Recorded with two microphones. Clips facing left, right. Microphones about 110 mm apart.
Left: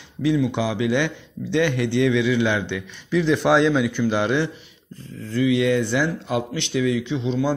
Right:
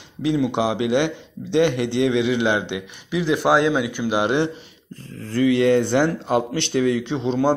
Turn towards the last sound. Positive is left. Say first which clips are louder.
# right 3 dB
turn(degrees=-40)  # may be behind; listen again after turning